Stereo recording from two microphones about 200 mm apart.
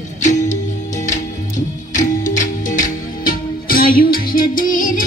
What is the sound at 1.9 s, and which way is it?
Music, 40° left (ahead or behind).